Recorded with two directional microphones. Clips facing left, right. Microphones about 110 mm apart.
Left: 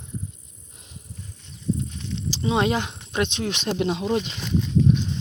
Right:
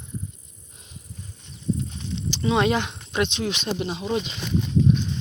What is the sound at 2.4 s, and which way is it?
Speech, 30° left (ahead or behind).